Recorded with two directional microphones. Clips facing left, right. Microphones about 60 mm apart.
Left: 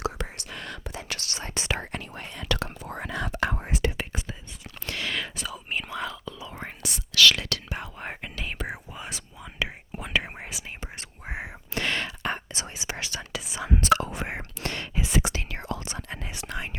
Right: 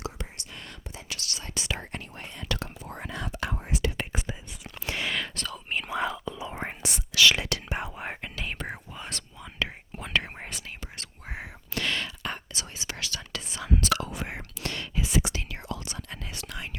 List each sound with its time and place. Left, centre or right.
0.0 s whispering: left
1.2 s whispering: left
1.7 s whispering: left
3.3 s whispering: left
4.3 s whispering: centre
5.4 s whispering: centre
5.9 s whispering: right
7.9 s whispering: centre
10.8 s whispering: left
13.3 s whispering: centre; by 16.7 s left